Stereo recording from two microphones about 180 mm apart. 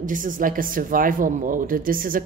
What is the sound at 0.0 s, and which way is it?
A woman's voice, 50° right (ahead or behind).